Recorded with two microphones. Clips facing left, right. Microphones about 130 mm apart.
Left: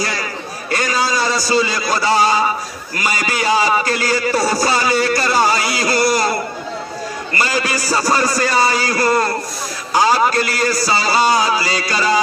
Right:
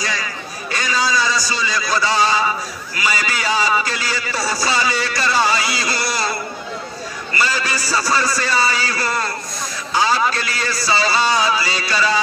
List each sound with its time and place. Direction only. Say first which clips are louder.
0.0 s a man's voice: left 3 dB; 50° left (ahead or behind)
7.3 s a man's voice: left 2 dB; 45° left (ahead or behind)